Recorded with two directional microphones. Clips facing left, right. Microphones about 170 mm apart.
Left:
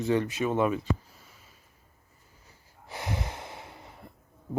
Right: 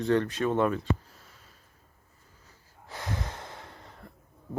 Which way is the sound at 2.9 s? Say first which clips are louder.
Left 1 dB; 10° left (ahead or behind).